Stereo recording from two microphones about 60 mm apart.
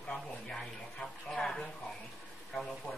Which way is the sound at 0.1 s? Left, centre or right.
Centre.